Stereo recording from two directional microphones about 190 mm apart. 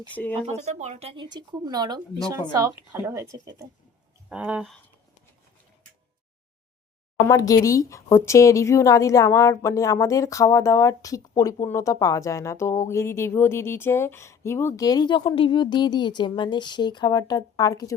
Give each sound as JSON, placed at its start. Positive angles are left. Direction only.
{"t": 0.1, "sound": "speech", "side_deg": 10}
{"t": 0.3, "sound": "speech", "side_deg": -35}
{"t": 4.3, "sound": "speech", "side_deg": -5}
{"t": 7.3, "sound": "speech", "side_deg": 20}